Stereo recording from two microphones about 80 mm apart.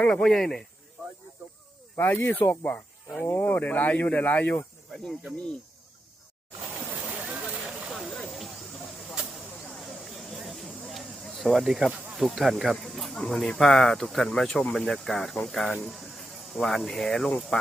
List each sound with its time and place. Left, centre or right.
0.0 s speech: centre
2.0 s speech: left
6.7 s a sound: centre
7.9 s hiss: centre
9.7 s a sound: centre
12.1 s speech: centre